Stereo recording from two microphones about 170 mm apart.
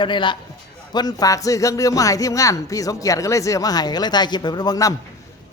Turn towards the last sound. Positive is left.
turn(degrees=20)  # may be behind; listen again after turning